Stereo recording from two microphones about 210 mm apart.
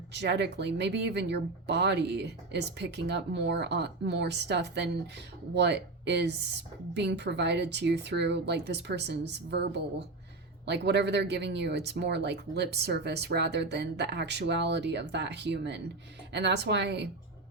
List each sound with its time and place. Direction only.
0.1 s speech: 55° right (ahead or behind)